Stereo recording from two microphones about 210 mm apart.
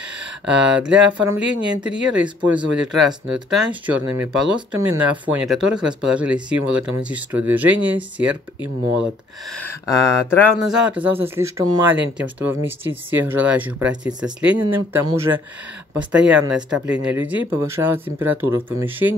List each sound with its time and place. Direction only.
0.5 s speech: 5° right (ahead or behind)
9.6 s speech: 15° left (ahead or behind)
10.7 s speech: 5° right (ahead or behind)